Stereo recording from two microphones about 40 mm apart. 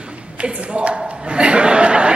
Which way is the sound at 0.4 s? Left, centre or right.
Right.